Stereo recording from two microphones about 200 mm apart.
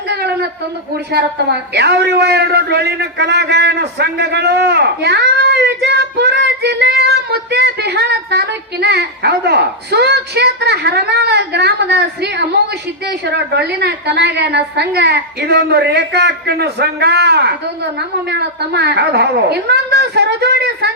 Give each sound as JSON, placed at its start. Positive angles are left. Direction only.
{"t": 1.7, "sound": "a man's voice", "side_deg": -55}